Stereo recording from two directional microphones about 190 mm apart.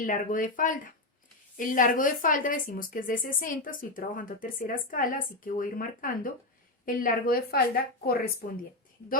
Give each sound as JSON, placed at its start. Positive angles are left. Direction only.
{"t": 0.0, "sound": "speech", "side_deg": 45}